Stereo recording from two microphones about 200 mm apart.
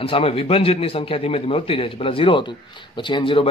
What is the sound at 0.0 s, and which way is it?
Speech, 30° left (ahead or behind).